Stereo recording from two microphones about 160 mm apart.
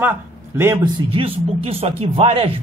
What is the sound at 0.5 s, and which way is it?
Speech, 15° right (ahead or behind).